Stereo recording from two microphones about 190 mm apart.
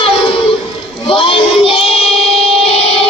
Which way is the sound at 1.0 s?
30° left (ahead or behind).